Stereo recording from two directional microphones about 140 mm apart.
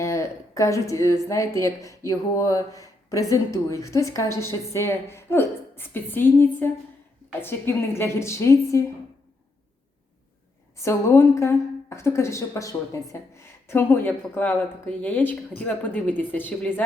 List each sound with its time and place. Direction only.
0.0 s speech: 20° left (ahead or behind)
10.8 s speech: 20° left (ahead or behind)